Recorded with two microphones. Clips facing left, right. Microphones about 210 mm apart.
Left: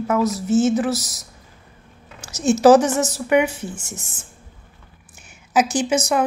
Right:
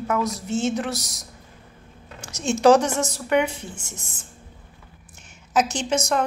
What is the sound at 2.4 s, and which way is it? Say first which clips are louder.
Speech: left 4 dB; 5° left (ahead or behind).